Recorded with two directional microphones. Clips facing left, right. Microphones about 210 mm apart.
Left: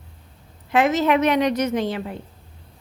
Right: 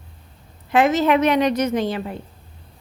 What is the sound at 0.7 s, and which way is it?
A woman's voice, 35° right (ahead or behind).